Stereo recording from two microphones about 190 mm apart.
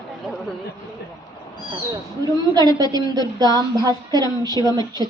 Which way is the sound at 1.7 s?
20° right (ahead or behind).